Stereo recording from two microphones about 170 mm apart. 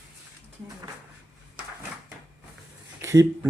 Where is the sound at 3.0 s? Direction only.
15° right (ahead or behind).